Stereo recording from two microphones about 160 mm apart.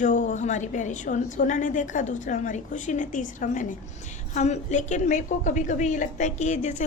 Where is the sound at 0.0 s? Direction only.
50° left (ahead or behind).